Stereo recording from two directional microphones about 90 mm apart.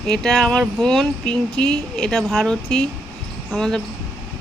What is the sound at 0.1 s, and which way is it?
Speech, 5° left (ahead or behind).